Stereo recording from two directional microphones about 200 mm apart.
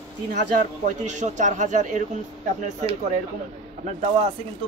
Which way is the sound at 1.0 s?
35° right (ahead or behind).